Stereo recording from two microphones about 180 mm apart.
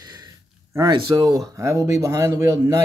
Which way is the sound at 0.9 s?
20° right (ahead or behind).